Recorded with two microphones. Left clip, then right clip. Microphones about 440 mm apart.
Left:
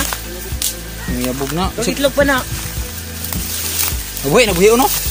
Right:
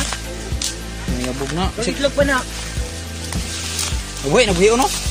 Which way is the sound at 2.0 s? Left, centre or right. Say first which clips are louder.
Left 3 dB; right.